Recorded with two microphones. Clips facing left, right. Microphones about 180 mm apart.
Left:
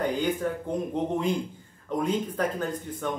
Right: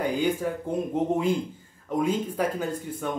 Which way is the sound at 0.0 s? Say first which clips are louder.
Right 1 dB; 10° right (ahead or behind).